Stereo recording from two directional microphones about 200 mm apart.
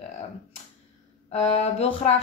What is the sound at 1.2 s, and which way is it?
Speech, 30° left (ahead or behind).